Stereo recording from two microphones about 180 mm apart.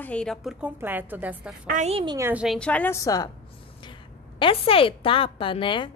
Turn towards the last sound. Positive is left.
turn(degrees=25)  # may be behind; listen again after turning